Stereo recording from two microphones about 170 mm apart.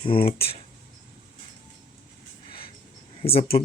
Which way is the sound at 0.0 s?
30° left (ahead or behind).